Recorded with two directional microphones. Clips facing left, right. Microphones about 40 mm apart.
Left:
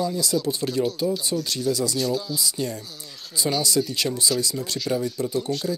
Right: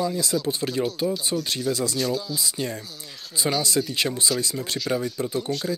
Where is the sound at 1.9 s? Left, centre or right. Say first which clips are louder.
Left 1 dB; centre.